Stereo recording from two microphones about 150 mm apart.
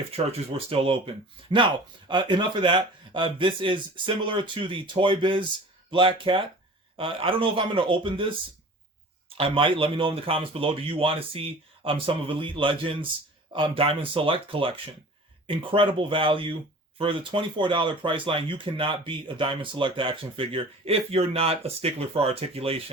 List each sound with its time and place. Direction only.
0.3 s speech: 40° right (ahead or behind)
9.4 s speech: 35° right (ahead or behind)